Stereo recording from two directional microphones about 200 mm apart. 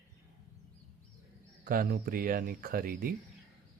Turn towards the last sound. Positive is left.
turn(degrees=-45)  # may be behind; listen again after turning